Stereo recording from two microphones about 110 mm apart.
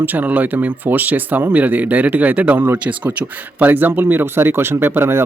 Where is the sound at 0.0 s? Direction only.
15° right (ahead or behind).